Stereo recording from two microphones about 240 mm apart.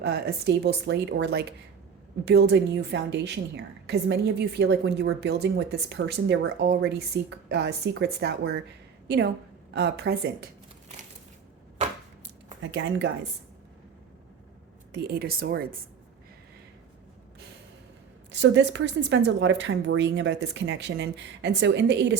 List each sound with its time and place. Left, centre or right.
0.0 s a woman's voice: right
14.9 s speech: right
18.3 s a woman's voice: right